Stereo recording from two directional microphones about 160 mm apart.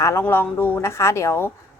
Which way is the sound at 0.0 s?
15° left (ahead or behind).